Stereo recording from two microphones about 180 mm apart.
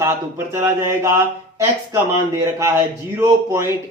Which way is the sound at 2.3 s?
15° right (ahead or behind).